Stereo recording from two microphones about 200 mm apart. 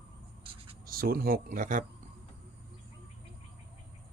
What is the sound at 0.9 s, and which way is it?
Speech, 45° right (ahead or behind).